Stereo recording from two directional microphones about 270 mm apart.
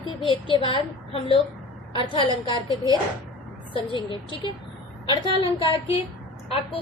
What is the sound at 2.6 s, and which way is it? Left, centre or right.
Speech, centre.